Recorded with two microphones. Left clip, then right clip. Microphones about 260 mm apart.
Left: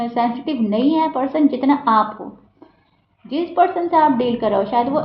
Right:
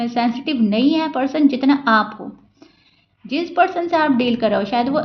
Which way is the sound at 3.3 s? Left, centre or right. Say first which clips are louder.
Even; right.